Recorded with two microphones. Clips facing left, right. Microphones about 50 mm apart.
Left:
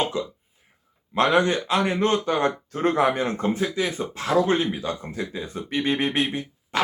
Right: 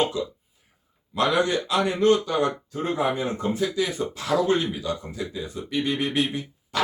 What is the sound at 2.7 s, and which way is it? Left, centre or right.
Speech, left.